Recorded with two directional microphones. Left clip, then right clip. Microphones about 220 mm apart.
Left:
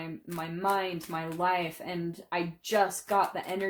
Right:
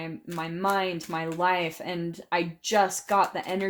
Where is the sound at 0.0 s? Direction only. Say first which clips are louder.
Right 4 dB; 35° right (ahead or behind).